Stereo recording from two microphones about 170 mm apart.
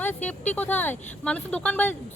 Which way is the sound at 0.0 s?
10° left (ahead or behind).